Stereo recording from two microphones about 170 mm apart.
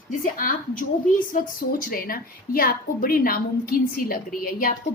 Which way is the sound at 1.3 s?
55° left (ahead or behind).